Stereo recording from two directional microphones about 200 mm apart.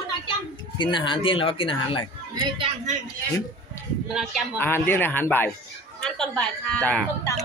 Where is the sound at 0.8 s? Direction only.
25° left (ahead or behind).